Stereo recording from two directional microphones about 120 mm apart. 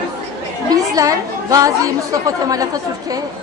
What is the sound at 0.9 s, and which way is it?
A woman's voice, 30° right (ahead or behind).